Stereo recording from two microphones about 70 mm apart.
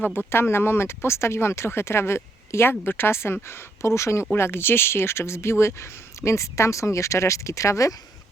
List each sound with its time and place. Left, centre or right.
0.0 s speech: left